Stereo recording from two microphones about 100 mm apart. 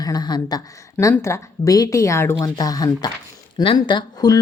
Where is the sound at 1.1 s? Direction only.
30° left (ahead or behind).